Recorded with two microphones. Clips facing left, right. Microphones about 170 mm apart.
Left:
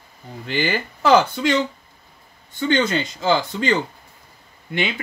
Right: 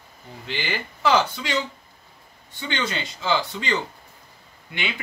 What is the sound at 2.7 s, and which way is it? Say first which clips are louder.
Speech: left 8 dB; 45° left (ahead or behind).